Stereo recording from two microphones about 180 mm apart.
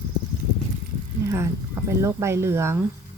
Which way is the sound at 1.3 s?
15° right (ahead or behind).